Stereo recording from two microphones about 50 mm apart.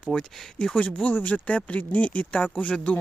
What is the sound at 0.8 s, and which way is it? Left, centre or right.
Speech, left.